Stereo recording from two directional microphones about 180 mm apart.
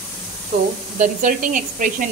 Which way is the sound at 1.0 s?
45° right (ahead or behind).